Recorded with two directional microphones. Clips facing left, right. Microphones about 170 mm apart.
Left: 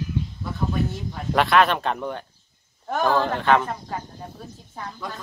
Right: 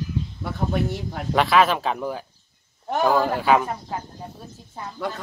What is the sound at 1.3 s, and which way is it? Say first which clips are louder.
A man's voice: even; centre (ahead or behind).